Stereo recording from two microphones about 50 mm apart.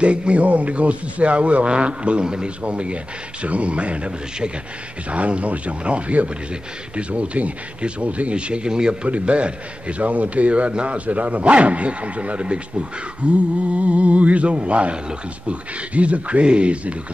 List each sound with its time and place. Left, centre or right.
0.0 s a man's voice: right